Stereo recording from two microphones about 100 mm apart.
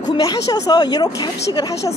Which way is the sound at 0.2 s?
40° left (ahead or behind).